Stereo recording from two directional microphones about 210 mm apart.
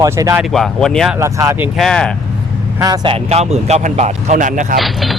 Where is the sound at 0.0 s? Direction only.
15° right (ahead or behind).